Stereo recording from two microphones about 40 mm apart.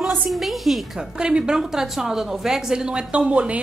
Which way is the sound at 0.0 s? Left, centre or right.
Centre.